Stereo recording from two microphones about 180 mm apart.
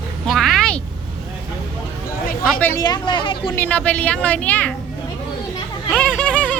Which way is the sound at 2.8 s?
25° left (ahead or behind).